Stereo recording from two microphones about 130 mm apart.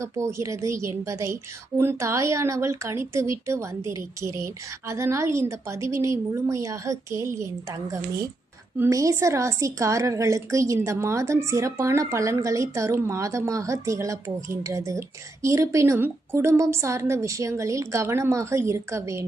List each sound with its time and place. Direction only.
0.0 s speech: 20° right (ahead or behind)